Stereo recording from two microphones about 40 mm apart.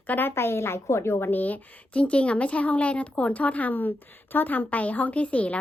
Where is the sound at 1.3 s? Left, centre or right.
Left.